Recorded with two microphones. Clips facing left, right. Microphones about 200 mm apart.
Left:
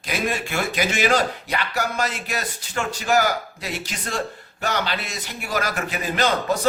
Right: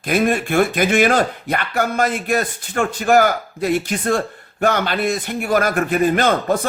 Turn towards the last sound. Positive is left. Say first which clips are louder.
# right 5 dB
turn(degrees=-55)  # may be behind; listen again after turning